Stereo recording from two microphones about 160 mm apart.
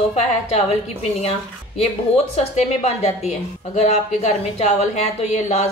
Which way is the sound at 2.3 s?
45° left (ahead or behind).